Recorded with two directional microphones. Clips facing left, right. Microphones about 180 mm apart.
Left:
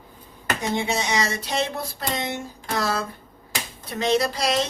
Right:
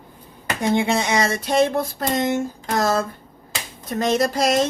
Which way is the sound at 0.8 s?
55° right (ahead or behind).